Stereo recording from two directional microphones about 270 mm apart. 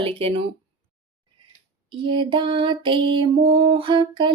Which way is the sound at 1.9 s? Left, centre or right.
Centre.